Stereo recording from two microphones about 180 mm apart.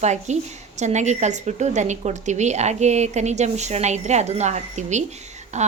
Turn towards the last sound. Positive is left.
turn(degrees=-40)  # may be behind; listen again after turning